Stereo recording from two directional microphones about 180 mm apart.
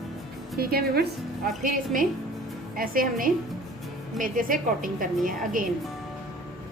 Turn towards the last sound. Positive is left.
turn(degrees=-50)  # may be behind; listen again after turning